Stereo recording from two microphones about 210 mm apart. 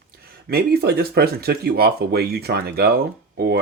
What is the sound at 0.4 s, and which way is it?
Speech, 50° right (ahead or behind).